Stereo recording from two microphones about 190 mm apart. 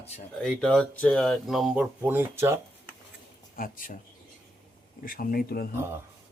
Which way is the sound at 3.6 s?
45° left (ahead or behind).